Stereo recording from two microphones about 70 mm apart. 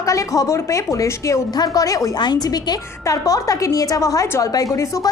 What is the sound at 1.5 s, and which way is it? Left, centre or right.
Speech, left.